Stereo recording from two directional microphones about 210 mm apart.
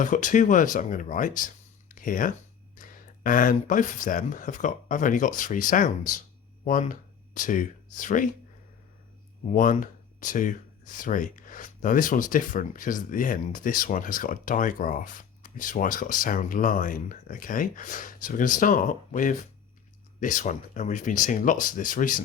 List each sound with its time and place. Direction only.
0.0 s speech: 40° left (ahead or behind)
1.9 s a sound: 40° left (ahead or behind)
2.7 s speech: 40° left (ahead or behind)
9.5 s speech: 40° left (ahead or behind)